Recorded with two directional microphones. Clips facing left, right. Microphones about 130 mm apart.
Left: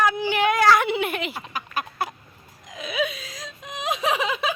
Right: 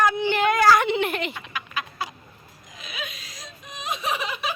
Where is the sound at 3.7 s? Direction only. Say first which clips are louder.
Left 4 dB; 90° left.